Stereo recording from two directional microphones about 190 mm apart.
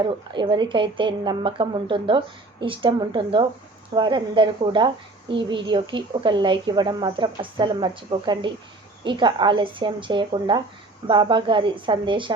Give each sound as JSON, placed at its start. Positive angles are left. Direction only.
{"t": 0.0, "sound": "a woman's voice", "side_deg": -25}